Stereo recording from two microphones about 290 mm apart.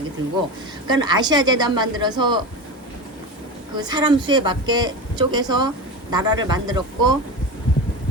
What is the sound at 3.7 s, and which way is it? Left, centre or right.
Speech, centre.